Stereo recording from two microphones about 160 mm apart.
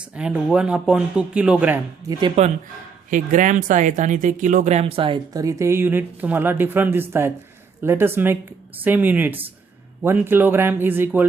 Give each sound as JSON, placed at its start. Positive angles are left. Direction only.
{"t": 0.2, "sound": "speech", "side_deg": -5}
{"t": 2.4, "sound": "speech", "side_deg": -40}
{"t": 3.1, "sound": "speech", "side_deg": -50}